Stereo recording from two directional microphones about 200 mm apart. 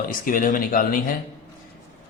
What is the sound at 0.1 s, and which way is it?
Speech, 45° left (ahead or behind).